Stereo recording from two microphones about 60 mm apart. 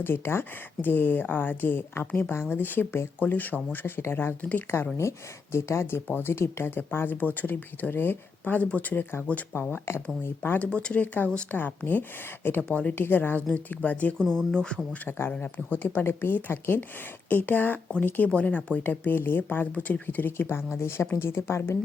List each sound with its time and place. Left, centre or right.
0.0 s speech: left
4.9 s speech: left
9.5 s speech: left
10.7 s a woman's voice: centre
14.3 s speech: centre
15.0 s a woman's voice: left
18.8 s speech: left